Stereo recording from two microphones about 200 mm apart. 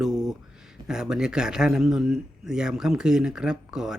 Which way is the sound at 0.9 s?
5° right (ahead or behind).